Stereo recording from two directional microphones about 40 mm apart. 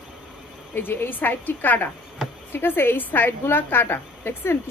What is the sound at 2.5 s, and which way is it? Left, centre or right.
Speech, left.